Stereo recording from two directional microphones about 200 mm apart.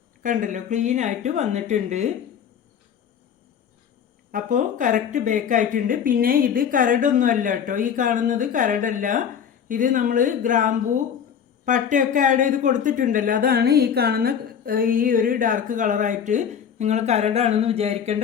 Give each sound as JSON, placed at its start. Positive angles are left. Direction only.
{"t": 0.2, "sound": "speech", "side_deg": -40}
{"t": 4.3, "sound": "speech", "side_deg": -40}